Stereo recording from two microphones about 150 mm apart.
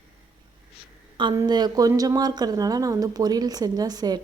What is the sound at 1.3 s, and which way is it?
Speech, 25° right (ahead or behind).